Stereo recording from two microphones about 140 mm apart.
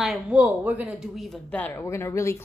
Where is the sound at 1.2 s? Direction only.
5° left (ahead or behind).